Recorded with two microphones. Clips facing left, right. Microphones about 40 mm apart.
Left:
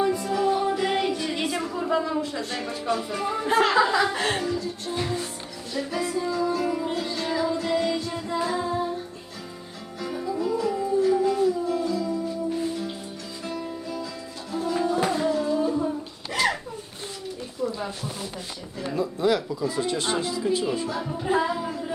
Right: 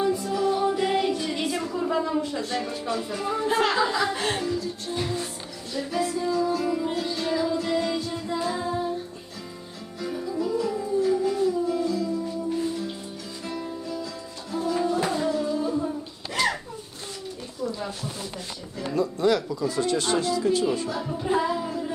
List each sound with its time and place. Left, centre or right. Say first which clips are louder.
0.2 s music: left 1 dB; centre
1.8 s speech: even; centre
4.9 s music: left 1 dB; centre
10.0 s music: left 1 dB; centre
14.7 s music: left 1 dB; centre
15.6 s female singing: left 2 dB; centre
17.7 s a sound: left 1 dB; centre
18.8 s speech: right 1 dB; centre